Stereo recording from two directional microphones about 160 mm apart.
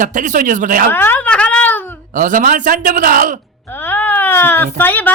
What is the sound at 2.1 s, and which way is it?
A man's voice, 60° right (ahead or behind).